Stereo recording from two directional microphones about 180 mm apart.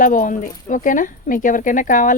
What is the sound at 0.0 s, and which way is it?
Speech, 45° left (ahead or behind).